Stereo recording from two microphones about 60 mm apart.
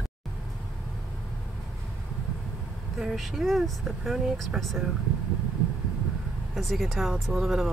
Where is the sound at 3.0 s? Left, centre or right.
Centre.